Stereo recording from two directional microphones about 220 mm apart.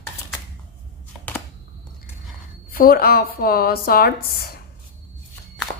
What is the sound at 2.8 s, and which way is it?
Speech, 40° left (ahead or behind).